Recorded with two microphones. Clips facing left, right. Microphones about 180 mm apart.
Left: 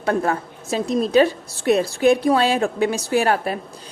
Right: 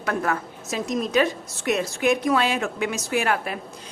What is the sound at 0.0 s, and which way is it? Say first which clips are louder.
A woman's voice: left 4 dB; 30° left (ahead or behind).